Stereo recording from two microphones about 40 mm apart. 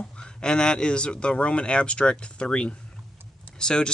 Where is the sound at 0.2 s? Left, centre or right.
Left.